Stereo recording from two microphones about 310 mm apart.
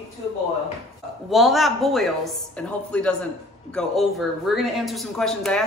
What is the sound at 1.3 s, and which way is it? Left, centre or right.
A man's voice, centre.